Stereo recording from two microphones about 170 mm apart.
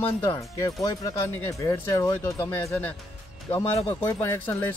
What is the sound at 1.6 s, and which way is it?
Speech, 20° left (ahead or behind).